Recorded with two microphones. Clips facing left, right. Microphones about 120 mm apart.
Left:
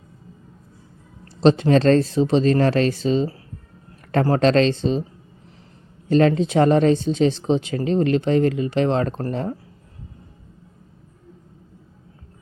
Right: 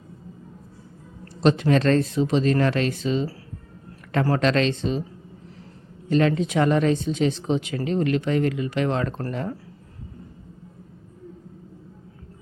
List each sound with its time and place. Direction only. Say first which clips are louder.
1.4 s speech: left 4 dB; 30° left (ahead or behind)
6.1 s speech: left 4 dB; 35° left (ahead or behind)